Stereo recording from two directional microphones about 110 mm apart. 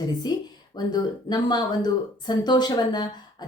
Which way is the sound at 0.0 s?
40° left (ahead or behind).